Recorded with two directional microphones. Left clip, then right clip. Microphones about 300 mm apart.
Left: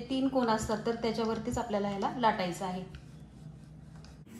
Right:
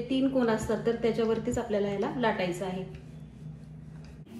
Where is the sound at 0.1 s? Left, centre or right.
Left.